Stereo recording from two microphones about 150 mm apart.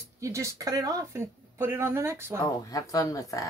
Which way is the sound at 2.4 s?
25° left (ahead or behind).